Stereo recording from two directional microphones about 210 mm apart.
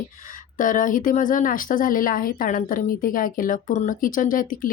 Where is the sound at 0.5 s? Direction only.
40° left (ahead or behind).